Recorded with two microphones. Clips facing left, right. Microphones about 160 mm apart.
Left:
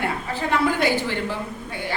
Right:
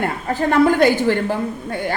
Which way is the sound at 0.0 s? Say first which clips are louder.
Right 6 dB; 45° right (ahead or behind).